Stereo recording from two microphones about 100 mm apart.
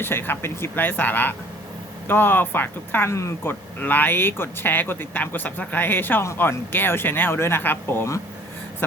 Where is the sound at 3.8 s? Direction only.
20° left (ahead or behind).